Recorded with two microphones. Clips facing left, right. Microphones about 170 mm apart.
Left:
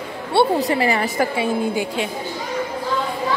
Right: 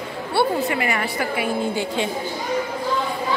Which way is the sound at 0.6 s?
35° left (ahead or behind).